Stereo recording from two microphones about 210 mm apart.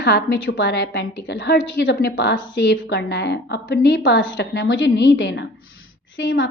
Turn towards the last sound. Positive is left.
turn(degrees=60)  # may be behind; listen again after turning